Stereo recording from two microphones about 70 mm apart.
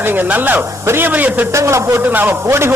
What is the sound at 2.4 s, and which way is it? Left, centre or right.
Speech, right.